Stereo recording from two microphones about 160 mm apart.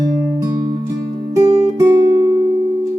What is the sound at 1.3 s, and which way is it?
Music, 20° right (ahead or behind).